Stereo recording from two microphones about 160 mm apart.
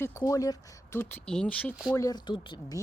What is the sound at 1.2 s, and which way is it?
Speech, 5° left (ahead or behind).